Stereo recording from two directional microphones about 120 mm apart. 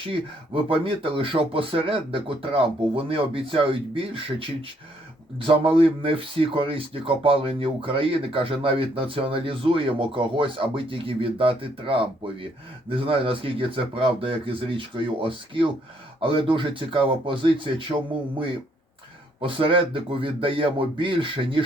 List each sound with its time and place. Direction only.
0.0 s speech: 45° right (ahead or behind)
19.4 s speech: 50° right (ahead or behind)